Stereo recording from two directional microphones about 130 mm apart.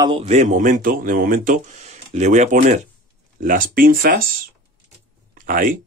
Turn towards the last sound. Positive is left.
turn(degrees=-90)